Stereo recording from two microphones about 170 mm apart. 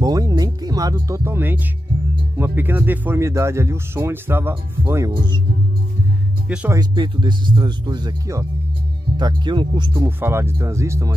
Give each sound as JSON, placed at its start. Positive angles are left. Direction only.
{"t": 0.0, "sound": "speech", "side_deg": -20}
{"t": 6.5, "sound": "speech", "side_deg": -10}
{"t": 6.8, "sound": "speech", "side_deg": -25}
{"t": 10.0, "sound": "speech", "side_deg": -15}